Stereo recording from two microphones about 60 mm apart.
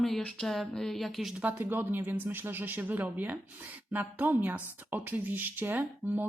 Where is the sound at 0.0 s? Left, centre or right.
Centre.